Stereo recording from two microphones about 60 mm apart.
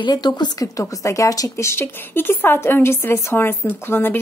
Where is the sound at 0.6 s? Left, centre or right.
Left.